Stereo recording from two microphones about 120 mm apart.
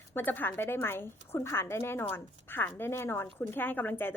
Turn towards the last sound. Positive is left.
turn(degrees=15)  # may be behind; listen again after turning